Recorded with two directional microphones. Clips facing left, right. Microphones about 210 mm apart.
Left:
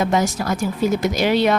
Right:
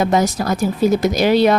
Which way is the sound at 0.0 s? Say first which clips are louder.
Right 3 dB; 40° right (ahead or behind).